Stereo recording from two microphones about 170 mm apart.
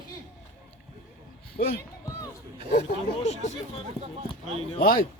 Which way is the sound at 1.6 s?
60° left (ahead or behind).